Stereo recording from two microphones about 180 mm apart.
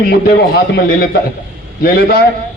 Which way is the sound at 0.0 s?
60° left (ahead or behind).